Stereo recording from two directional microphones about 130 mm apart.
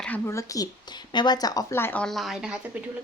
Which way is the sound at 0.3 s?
25° left (ahead or behind).